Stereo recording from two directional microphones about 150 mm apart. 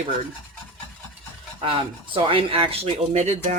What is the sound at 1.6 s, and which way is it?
Speech, 35° right (ahead or behind).